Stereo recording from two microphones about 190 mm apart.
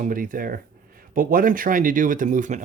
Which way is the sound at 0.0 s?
45° right (ahead or behind).